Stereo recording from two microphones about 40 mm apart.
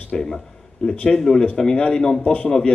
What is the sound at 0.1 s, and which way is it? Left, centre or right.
A man's voice, centre.